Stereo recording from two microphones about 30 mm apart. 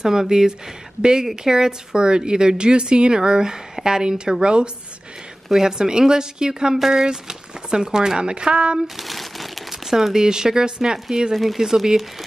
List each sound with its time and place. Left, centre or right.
0.0 s speech: centre
5.5 s speech: centre
8.8 s crumpling: centre
9.8 s speech: centre
10.2 s speech: right